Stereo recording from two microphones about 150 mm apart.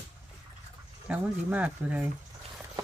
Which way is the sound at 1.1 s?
10° right (ahead or behind).